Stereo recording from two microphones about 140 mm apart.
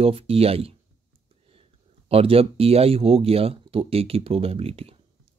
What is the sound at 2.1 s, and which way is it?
Speech, 45° right (ahead or behind).